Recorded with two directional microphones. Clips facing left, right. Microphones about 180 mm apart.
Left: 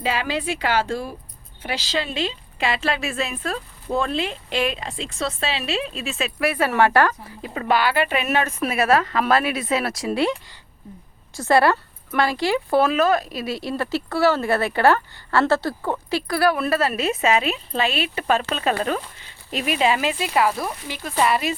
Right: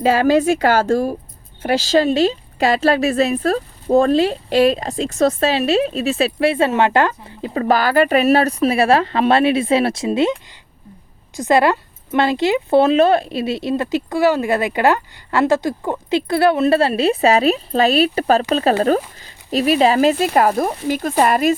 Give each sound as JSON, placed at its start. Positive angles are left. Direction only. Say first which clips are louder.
{"t": 0.0, "sound": "a woman's voice", "louder": "right 11 dB", "side_deg": -45}
{"t": 11.3, "sound": "a woman's voice", "louder": "right 3 dB", "side_deg": -20}